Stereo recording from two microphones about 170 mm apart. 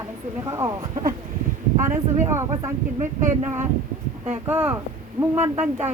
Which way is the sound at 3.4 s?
15° right (ahead or behind).